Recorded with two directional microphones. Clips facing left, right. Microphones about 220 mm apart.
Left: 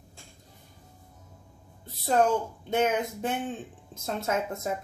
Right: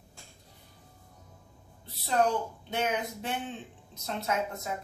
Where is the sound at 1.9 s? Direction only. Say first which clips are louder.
Left 4 dB; 45° left (ahead or behind).